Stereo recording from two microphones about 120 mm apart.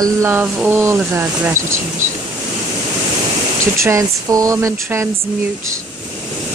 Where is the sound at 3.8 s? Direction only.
25° right (ahead or behind).